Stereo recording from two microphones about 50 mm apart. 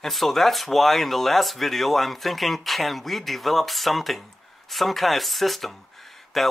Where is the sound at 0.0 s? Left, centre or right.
Centre.